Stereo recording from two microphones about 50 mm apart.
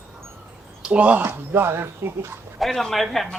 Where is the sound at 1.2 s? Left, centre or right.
Right.